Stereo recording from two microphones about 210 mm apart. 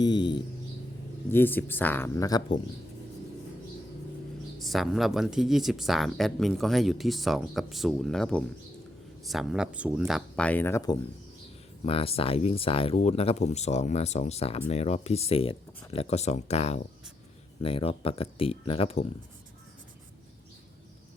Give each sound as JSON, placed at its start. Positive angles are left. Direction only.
{"t": 0.0, "sound": "mouse", "side_deg": 20}
{"t": 1.3, "sound": "speech", "side_deg": 10}
{"t": 4.6, "sound": "speech", "side_deg": 0}
{"t": 11.9, "sound": "speech", "side_deg": 25}